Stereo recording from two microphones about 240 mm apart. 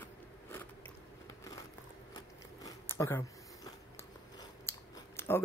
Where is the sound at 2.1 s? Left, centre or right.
Centre.